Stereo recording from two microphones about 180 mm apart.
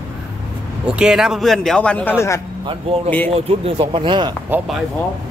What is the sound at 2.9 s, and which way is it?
Speech, 30° right (ahead or behind).